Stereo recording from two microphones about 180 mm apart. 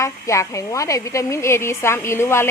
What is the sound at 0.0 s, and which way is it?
A woman's voice, 15° left (ahead or behind).